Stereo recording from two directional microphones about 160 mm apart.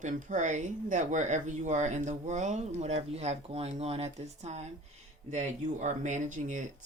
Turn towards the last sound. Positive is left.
turn(degrees=-55)  # may be behind; listen again after turning